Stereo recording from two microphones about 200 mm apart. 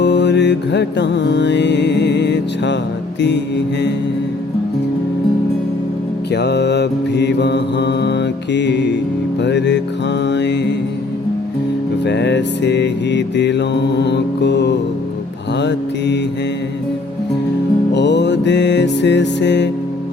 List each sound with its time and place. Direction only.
0.0 s music: 60° left (ahead or behind)
3.2 s mantra: 60° left (ahead or behind)
6.3 s mantra: 55° left (ahead or behind)
12.0 s mantra: 60° left (ahead or behind)
17.9 s music: 60° left (ahead or behind)